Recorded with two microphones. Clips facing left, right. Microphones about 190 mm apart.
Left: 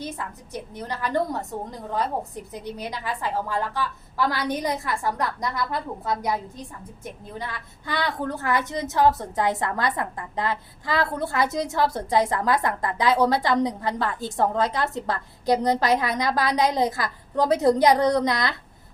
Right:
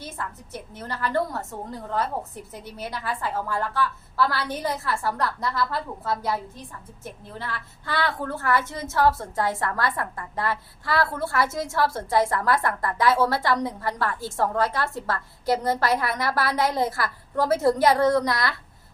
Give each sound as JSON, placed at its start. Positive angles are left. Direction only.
{"t": 0.5, "sound": "a woman's voice", "side_deg": 15}